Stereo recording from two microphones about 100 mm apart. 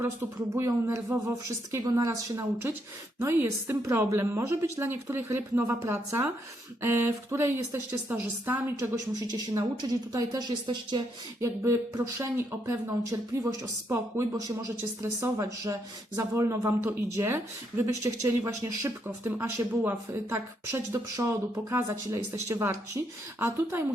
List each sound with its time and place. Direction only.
0.5 s speech: 25° right (ahead or behind)
9.3 s speech: 40° right (ahead or behind)
11.3 s speech: 30° right (ahead or behind)